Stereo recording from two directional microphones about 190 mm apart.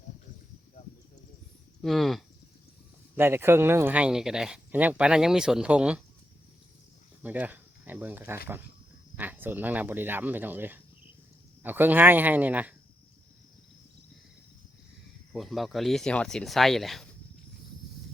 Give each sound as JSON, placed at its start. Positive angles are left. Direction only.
{"t": 1.8, "sound": "speech", "side_deg": 0}
{"t": 3.2, "sound": "speech", "side_deg": -10}
{"t": 7.2, "sound": "speech", "side_deg": -10}
{"t": 15.3, "sound": "speech", "side_deg": 0}